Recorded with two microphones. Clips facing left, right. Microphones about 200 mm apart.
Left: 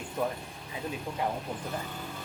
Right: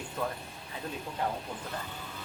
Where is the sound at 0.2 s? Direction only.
15° left (ahead or behind).